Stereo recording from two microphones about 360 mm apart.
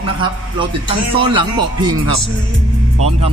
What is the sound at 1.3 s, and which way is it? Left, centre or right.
Speech, centre.